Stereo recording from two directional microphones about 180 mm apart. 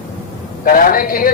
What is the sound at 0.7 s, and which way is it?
Speech, 50° left (ahead or behind).